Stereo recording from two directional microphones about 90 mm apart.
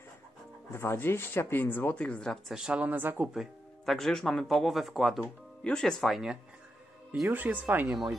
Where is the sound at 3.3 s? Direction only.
Centre (ahead or behind).